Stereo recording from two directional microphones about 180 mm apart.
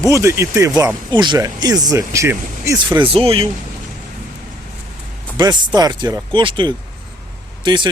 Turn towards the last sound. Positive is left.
turn(degrees=-25)  # may be behind; listen again after turning